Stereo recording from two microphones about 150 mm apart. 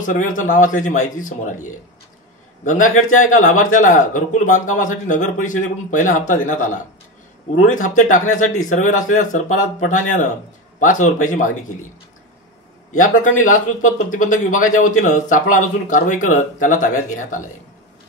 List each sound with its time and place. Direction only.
0.0 s speech: 60° left (ahead or behind)
2.7 s speech: 55° left (ahead or behind)
12.9 s speech: 60° left (ahead or behind)